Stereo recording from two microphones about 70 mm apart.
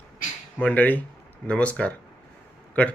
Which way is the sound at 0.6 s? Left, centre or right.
Left.